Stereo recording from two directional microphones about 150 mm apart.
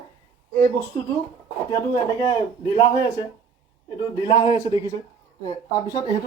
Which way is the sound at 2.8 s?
30° left (ahead or behind).